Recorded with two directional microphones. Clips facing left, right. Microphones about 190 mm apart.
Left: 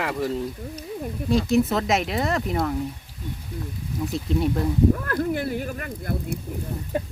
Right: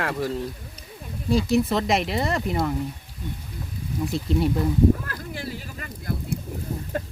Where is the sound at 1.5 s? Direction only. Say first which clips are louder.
Left 1 dB; centre (ahead or behind).